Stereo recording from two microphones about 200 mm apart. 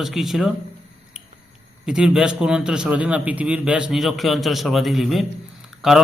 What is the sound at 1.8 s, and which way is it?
A man's voice, 5° right (ahead or behind).